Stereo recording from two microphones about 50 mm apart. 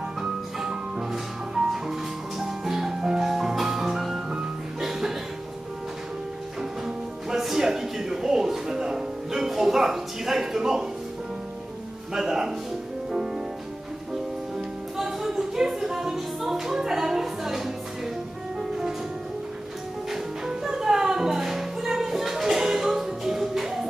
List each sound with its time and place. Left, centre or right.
0.2 s music: centre
4.3 s music: centre
7.2 s music: centre
12.1 s speech: centre
15.0 s music: centre
20.1 s music: centre